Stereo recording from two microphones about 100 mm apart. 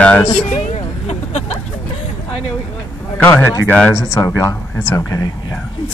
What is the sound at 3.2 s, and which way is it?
Speech, 15° left (ahead or behind).